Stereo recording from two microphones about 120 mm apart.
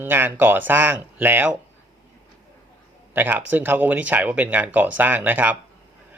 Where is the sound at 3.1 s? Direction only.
15° right (ahead or behind).